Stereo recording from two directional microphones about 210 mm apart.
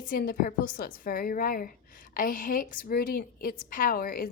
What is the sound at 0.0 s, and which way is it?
A woman's voice, 40° left (ahead or behind).